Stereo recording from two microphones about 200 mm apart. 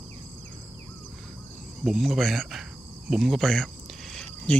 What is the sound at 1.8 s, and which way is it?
Speech, centre (ahead or behind).